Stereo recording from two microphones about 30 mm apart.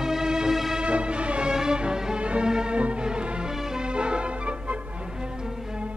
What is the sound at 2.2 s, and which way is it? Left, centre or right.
Music, right.